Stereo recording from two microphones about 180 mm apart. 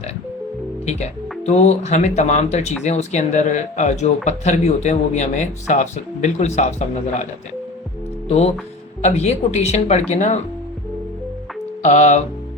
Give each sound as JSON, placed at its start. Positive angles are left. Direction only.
{"t": 0.9, "sound": "speech", "side_deg": 40}
{"t": 9.0, "sound": "speech", "side_deg": 35}
{"t": 11.8, "sound": "speech", "side_deg": 40}